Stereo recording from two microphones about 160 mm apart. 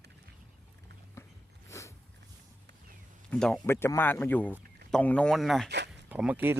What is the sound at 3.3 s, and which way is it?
A man's voice, 10° left (ahead or behind).